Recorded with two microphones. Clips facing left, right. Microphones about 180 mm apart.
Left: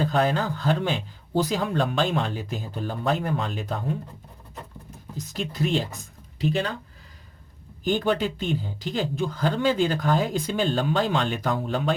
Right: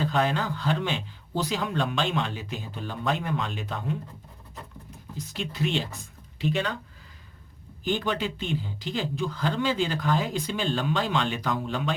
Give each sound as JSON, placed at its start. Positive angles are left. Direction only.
{"t": 0.0, "sound": "speech", "side_deg": 45}
{"t": 5.1, "sound": "speech", "side_deg": 45}
{"t": 7.9, "sound": "speech", "side_deg": 45}